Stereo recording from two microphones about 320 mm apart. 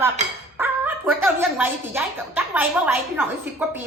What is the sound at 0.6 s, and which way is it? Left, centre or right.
Dog, centre.